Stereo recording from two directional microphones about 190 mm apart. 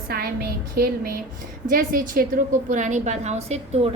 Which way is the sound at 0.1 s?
50° right (ahead or behind).